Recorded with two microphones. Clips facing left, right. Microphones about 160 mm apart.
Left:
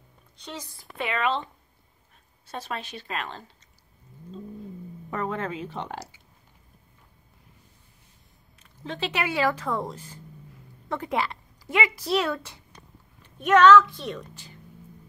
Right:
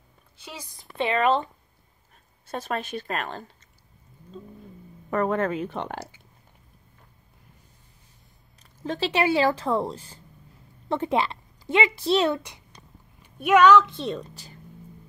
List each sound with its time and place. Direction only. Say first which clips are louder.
0.4 s a woman's voice: left 3 dB; 10° right (ahead or behind)
0.7 s speech: right 6 dB; 30° right (ahead or behind)
2.4 s speech: right 4 dB; 50° right (ahead or behind)
5.1 s speech: right 6 dB; 55° right (ahead or behind)
8.8 s a woman's voice: right 6 dB; 35° right (ahead or behind)